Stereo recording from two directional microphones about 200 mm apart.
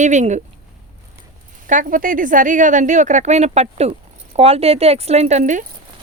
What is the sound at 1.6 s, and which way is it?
A woman's voice, 40° right (ahead or behind).